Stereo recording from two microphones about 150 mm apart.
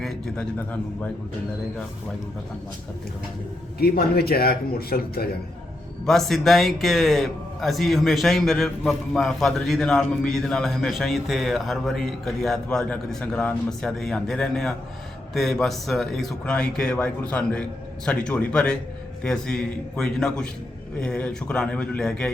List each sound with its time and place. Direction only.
0.0 s speech: 5° left (ahead or behind)
3.8 s speech: 90° left
6.1 s a man's voice: centre (ahead or behind)